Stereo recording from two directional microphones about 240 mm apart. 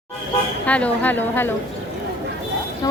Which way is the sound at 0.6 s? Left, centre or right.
Centre.